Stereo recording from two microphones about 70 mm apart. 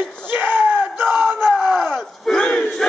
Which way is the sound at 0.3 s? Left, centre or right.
Right.